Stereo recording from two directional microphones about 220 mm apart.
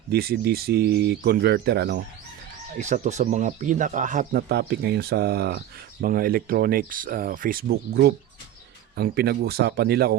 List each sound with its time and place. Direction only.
0.1 s speech: 45° right (ahead or behind)
2.7 s speech: 30° right (ahead or behind)